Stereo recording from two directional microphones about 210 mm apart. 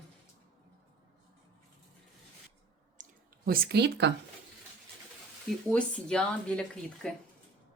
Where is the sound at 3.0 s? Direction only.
45° right (ahead or behind).